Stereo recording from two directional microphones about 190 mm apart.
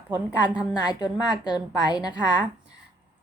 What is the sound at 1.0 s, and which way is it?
Speech, 25° left (ahead or behind).